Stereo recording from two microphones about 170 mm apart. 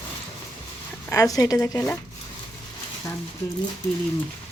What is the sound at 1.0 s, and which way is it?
Speech, 20° left (ahead or behind).